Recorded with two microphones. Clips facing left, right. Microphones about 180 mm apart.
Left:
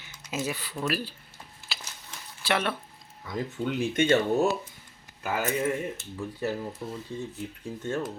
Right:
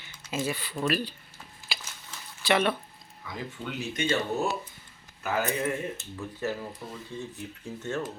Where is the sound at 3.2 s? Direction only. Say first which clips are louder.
Left 6 dB; 45° left (ahead or behind).